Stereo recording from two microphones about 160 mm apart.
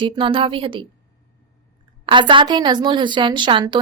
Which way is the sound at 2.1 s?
30° right (ahead or behind).